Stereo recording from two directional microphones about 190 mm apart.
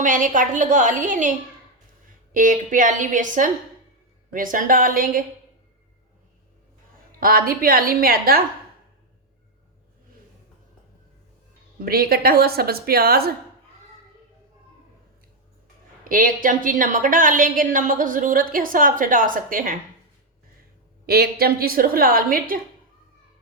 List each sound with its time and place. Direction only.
0.0 s a woman's voice: 45° right (ahead or behind)
2.3 s a woman's voice: 45° right (ahead or behind)
7.2 s a woman's voice: 50° right (ahead or behind)
11.9 s a woman's voice: 50° right (ahead or behind)
16.0 s a woman's voice: 45° right (ahead or behind)
21.1 s a woman's voice: 55° right (ahead or behind)